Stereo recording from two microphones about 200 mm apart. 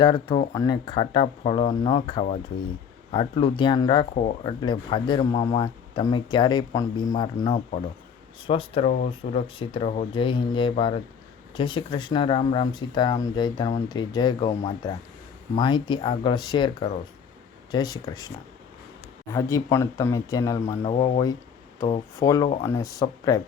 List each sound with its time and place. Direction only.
0.0 s speech: 25° left (ahead or behind)
19.3 s speech: 15° left (ahead or behind)
20.8 s speech: 25° left (ahead or behind)